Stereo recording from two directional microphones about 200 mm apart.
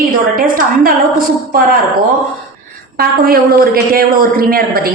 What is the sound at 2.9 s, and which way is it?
A man's voice, 50° right (ahead or behind).